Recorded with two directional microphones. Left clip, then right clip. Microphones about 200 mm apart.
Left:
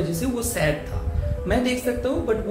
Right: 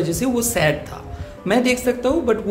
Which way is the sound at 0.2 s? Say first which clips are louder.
Right 6 dB; 40° right (ahead or behind).